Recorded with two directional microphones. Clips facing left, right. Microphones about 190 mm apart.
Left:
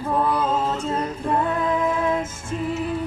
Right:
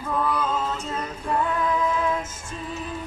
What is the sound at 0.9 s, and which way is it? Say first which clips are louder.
Female singing: left 4 dB; 30° left (ahead or behind).